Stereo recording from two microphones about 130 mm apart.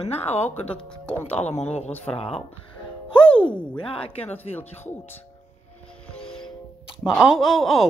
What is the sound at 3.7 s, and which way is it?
Speech, 40° left (ahead or behind).